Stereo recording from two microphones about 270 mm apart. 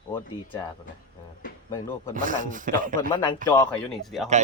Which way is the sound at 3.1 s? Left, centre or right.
Centre.